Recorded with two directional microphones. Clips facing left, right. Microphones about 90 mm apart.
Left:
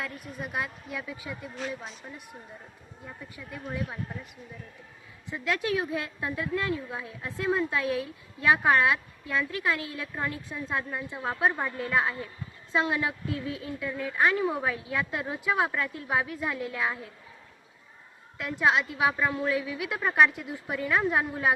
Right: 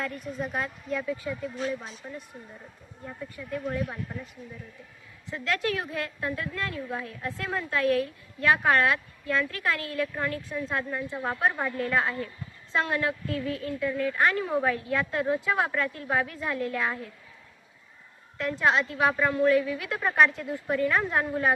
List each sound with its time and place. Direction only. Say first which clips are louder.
0.0 s a woman's voice: right 4 dB; 5° left (ahead or behind)
5.3 s a woman's voice: even; 15° left (ahead or behind)
18.3 s a woman's voice: right 1 dB; 10° left (ahead or behind)